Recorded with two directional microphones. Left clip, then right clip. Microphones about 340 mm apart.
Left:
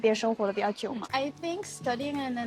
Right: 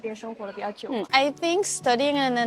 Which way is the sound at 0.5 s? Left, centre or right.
Centre.